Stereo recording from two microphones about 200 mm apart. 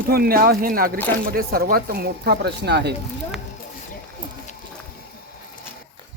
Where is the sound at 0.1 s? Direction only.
50° right (ahead or behind).